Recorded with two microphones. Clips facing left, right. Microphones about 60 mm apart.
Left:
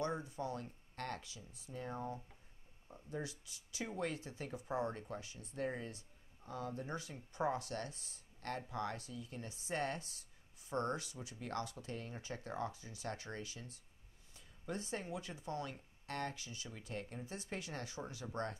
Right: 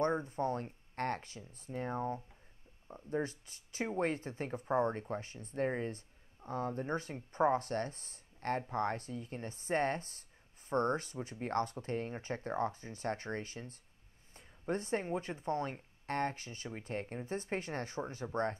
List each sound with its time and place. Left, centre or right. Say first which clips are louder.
0.0 s speech: right 7 dB; right